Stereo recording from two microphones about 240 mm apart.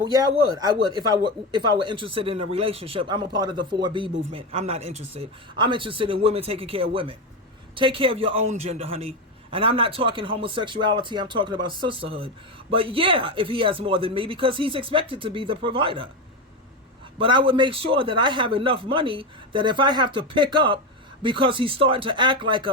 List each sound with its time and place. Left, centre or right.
0.1 s a man's voice: centre
17.2 s a man's voice: right